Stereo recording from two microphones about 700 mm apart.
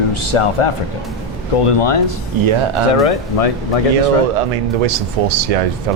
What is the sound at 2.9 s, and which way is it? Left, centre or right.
Speech, left.